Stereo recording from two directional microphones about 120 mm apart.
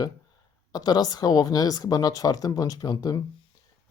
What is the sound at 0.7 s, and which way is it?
Speech, 35° left (ahead or behind).